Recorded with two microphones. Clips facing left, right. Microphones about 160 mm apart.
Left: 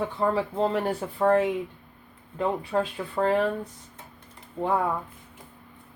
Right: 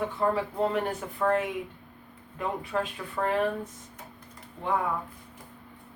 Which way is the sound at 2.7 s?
30° left (ahead or behind).